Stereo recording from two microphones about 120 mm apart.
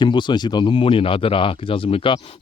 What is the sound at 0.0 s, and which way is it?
Speech, 40° left (ahead or behind).